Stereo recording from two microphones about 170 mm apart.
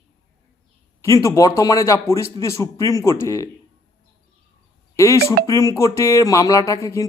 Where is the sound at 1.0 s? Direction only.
20° left (ahead or behind).